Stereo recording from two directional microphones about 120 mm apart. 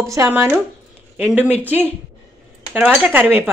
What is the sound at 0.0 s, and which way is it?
Speech, 25° right (ahead or behind).